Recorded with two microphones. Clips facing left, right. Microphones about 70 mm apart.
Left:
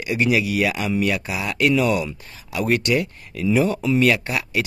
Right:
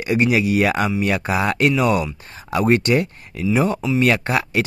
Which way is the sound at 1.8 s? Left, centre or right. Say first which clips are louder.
Right 2 dB; right.